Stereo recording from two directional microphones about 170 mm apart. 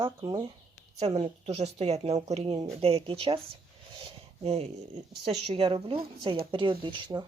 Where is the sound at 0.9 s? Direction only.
40° right (ahead or behind).